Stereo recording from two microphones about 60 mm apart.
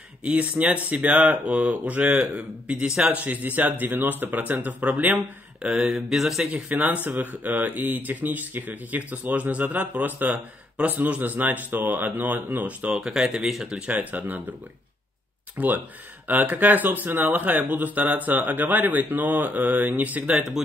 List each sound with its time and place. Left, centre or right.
0.2 s speech: right
5.7 s speech: centre
6.5 s speech: right
12.8 s speech: centre
13.7 s speech: centre
15.5 s speech: right
20.6 s speech: centre